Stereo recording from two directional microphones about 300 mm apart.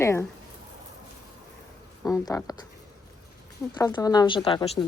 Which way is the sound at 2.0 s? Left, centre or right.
Centre.